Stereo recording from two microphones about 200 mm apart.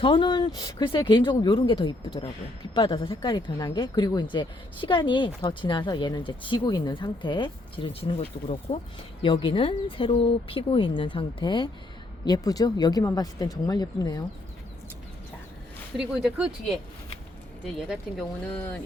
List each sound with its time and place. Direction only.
0.0 s speech: 25° left (ahead or behind)
16.0 s speech: centre (ahead or behind)
17.7 s speech: 5° right (ahead or behind)